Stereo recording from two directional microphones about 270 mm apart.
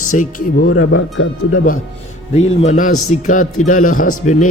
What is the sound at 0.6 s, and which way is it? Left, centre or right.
Speech, left.